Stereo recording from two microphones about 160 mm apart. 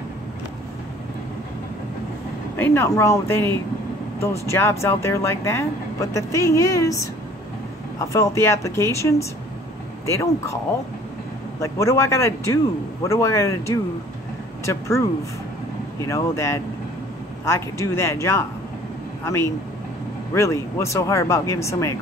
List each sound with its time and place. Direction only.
2.5 s speech: 15° left (ahead or behind)
11.6 s speech: 20° left (ahead or behind)
16.1 s speech: 20° left (ahead or behind)